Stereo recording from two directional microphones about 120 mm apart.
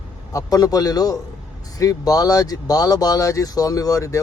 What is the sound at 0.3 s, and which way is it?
A man's voice, 30° left (ahead or behind).